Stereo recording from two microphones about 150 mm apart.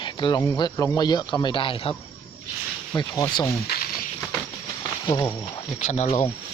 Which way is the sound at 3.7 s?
90° left.